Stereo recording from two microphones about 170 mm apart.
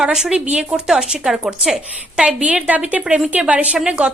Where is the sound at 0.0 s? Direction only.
5° right (ahead or behind).